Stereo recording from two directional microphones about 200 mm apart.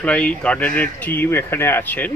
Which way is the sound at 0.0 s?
5° left (ahead or behind).